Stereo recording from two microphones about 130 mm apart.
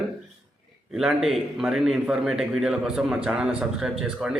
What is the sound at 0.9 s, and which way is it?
A man's voice, centre (ahead or behind).